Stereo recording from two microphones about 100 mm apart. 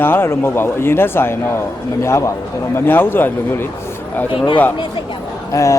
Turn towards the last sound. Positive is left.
turn(degrees=30)  # may be behind; listen again after turning